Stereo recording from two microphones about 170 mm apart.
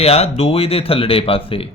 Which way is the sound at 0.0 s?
35° left (ahead or behind).